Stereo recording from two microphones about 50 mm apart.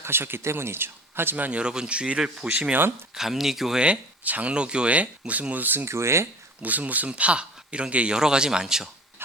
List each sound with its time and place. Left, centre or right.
0.0 s speech: right
1.5 s a man's voice: right
3.2 s a man's voice: centre
3.8 s speech: right
5.8 s speech: right
6.6 s speech: right
7.1 s a man's voice: right
8.6 s speech: centre